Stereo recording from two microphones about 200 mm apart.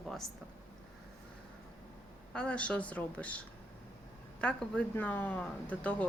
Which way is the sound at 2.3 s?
5° left (ahead or behind).